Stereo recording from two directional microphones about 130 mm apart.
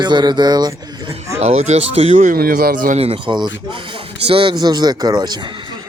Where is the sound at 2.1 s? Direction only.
80° right.